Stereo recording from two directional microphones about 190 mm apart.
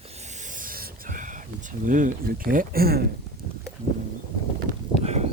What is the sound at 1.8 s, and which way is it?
Speech, 45° right (ahead or behind).